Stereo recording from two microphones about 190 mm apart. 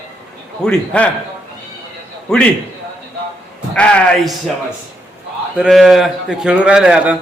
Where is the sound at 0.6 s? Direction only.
5° left (ahead or behind).